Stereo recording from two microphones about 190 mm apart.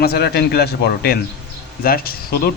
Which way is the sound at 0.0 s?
55° left (ahead or behind).